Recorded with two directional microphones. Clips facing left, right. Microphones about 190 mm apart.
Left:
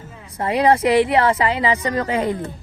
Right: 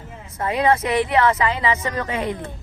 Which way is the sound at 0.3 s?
30° left (ahead or behind).